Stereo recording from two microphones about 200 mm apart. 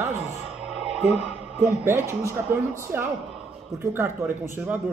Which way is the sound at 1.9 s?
15° right (ahead or behind).